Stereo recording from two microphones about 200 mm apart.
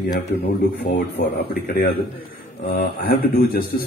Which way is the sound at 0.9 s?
55° left (ahead or behind).